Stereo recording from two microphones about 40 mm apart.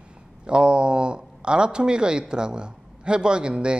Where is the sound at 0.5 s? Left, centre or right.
Right.